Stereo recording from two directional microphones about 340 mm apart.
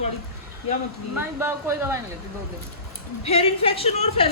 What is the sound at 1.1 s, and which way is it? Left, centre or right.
Speech, centre.